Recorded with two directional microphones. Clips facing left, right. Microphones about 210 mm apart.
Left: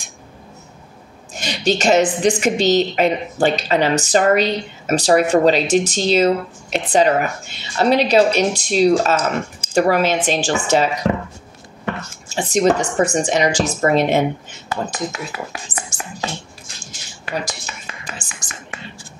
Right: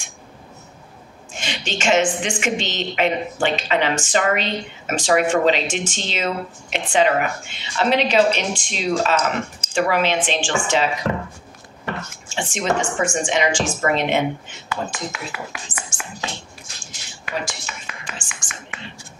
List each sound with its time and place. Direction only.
1.3 s a woman's voice: 40° left (ahead or behind)
12.3 s a woman's voice: 40° left (ahead or behind)
18.0 s whispering: 40° left (ahead or behind)